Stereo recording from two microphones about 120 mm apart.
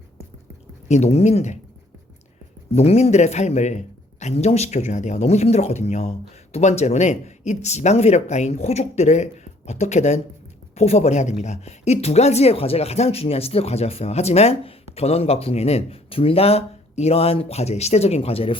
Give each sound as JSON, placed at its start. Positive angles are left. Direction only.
{"t": 0.9, "sound": "speech", "side_deg": 65}
{"t": 2.7, "sound": "speech", "side_deg": 60}